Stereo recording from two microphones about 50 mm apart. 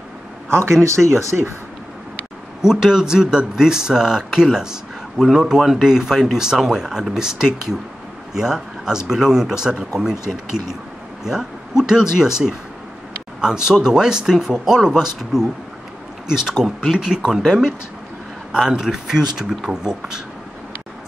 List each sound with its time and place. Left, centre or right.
0.5 s speech: right
2.6 s a man's voice: centre
18.5 s speech: centre